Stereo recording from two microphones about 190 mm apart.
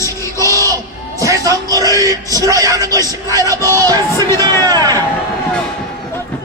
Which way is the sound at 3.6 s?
15° left (ahead or behind).